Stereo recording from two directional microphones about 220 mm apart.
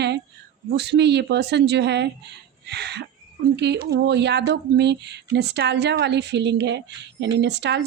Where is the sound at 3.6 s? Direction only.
50° right (ahead or behind).